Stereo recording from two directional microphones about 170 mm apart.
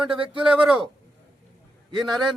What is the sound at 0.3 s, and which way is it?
Speech, 5° right (ahead or behind).